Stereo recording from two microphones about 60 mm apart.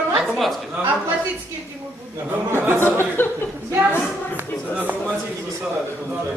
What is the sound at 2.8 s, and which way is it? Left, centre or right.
Speech, left.